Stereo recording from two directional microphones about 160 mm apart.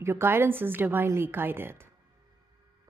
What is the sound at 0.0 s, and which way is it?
A woman's voice, 15° right (ahead or behind).